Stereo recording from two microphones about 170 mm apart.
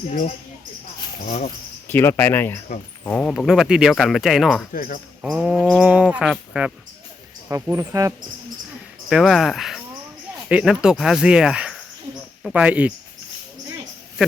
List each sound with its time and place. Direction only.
0.1 s speech: 55° left (ahead or behind)
1.9 s speech: 15° left (ahead or behind)
4.7 s speech: 55° left (ahead or behind)
5.2 s speech: 5° right (ahead or behind)
7.4 s speech: 15° right (ahead or behind)
9.0 s speech: centre (ahead or behind)